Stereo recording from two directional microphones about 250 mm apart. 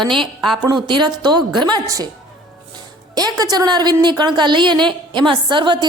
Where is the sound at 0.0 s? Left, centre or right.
Centre.